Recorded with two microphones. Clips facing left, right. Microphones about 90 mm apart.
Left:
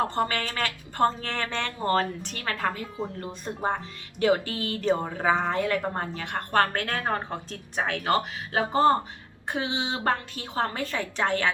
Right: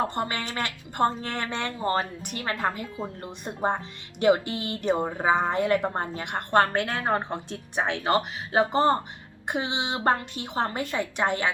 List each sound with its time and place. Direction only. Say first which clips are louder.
0.1 s speech: left 2 dB; 20° right (ahead or behind)